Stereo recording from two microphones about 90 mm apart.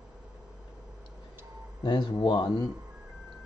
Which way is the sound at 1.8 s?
55° left (ahead or behind).